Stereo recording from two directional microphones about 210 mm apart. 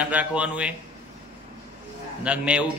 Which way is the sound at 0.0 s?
5° right (ahead or behind).